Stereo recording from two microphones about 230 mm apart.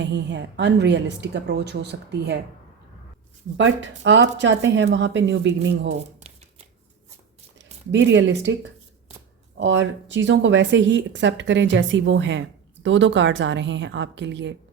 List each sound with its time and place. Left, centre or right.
0.0 s speech: right
3.6 s speech: right
6.3 s shuffling cards: right
7.6 s speech: right